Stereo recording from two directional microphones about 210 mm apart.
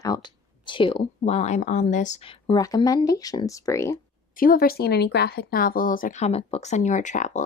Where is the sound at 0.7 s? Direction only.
25° left (ahead or behind).